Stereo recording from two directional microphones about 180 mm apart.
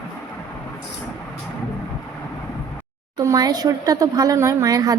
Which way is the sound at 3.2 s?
20° right (ahead or behind).